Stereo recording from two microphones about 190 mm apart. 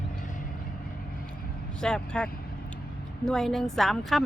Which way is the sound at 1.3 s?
5° left (ahead or behind).